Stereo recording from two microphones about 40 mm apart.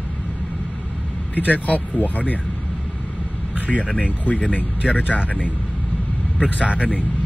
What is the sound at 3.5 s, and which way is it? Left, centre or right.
Vehicle, right.